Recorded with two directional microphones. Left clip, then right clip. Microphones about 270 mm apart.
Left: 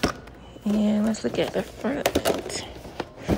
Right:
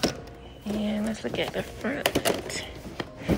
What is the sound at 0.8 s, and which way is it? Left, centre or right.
Speech, centre.